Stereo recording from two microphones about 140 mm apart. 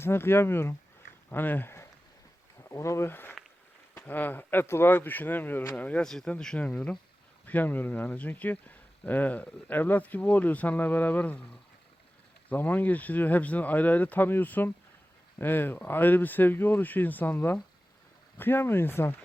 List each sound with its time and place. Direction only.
0.0 s speech: 15° left (ahead or behind)
12.5 s speech: 15° left (ahead or behind)